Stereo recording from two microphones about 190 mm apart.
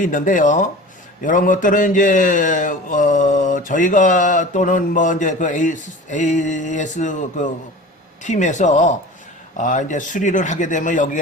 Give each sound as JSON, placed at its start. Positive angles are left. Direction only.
{"t": 0.0, "sound": "a man's voice", "side_deg": 40}